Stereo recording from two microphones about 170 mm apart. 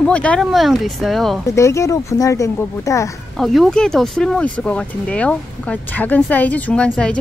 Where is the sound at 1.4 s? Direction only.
15° left (ahead or behind).